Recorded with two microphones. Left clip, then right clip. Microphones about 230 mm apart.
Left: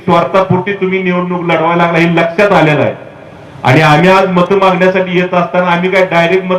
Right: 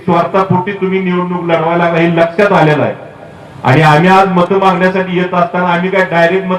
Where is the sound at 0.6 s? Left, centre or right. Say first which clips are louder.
Left 2 dB; left.